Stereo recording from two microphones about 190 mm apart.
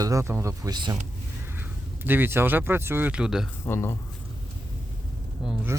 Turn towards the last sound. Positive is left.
turn(degrees=-5)  # may be behind; listen again after turning